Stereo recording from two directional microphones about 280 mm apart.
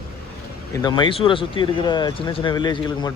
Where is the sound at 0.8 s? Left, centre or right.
Centre.